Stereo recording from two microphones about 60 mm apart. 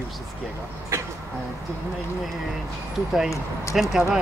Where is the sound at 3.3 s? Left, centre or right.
Left.